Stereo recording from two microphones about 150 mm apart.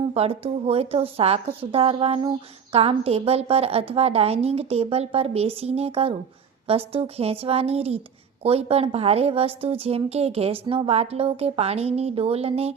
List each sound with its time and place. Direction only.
0.1 s a woman's voice: 40° right (ahead or behind)